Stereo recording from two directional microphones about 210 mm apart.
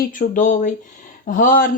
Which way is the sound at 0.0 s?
40° left (ahead or behind).